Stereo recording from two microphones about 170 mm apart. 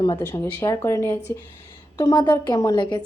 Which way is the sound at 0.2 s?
15° left (ahead or behind).